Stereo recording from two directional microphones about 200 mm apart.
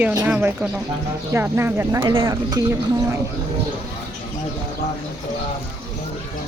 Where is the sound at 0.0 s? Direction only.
15° right (ahead or behind).